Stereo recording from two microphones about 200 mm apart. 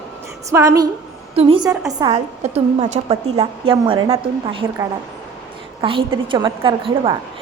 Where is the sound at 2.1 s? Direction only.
30° right (ahead or behind).